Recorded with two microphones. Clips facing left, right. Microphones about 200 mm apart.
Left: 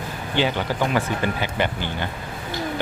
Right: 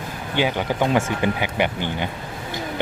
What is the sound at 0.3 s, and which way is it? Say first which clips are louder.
Speech: right 1 dB; 15° right (ahead or behind).